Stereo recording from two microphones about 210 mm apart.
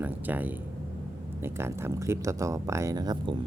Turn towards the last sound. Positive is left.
turn(degrees=-15)  # may be behind; listen again after turning